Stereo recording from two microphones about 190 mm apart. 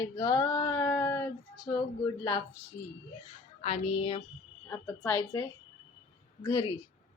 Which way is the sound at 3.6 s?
35° left (ahead or behind).